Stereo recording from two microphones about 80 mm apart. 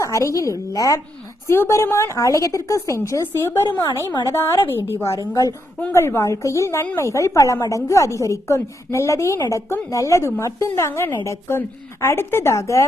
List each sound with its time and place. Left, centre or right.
0.0 s a woman's voice: left
1.5 s a woman's voice: left
5.3 s a woman's voice: left
5.9 s a woman's voice: left